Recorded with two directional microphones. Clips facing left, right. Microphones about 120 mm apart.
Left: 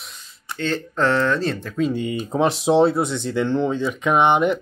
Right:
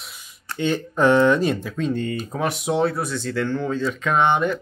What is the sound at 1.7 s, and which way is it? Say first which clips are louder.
Speech: left 2 dB; 10° left (ahead or behind).